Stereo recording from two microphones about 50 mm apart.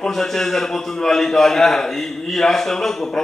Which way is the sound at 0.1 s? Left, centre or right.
Centre.